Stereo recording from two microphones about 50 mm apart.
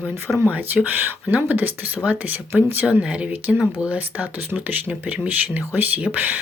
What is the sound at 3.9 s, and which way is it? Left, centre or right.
Speech, right.